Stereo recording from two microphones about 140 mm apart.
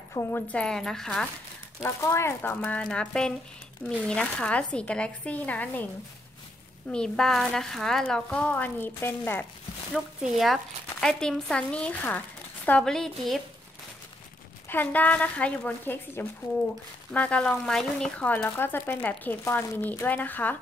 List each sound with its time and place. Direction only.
0.1 s speech: 15° left (ahead or behind)
1.8 s speech: 20° left (ahead or behind)
6.9 s speech: 5° left (ahead or behind)
9.9 s speech: centre (ahead or behind)
14.7 s speech: 10° left (ahead or behind)